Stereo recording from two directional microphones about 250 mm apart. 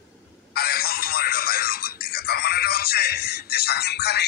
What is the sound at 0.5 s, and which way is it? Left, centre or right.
Music, left.